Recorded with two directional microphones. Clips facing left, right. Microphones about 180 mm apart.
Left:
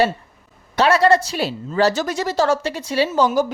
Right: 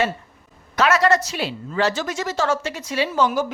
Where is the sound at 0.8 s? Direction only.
30° left (ahead or behind).